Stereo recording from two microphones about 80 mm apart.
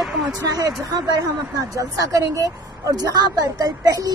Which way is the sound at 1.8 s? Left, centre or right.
Right.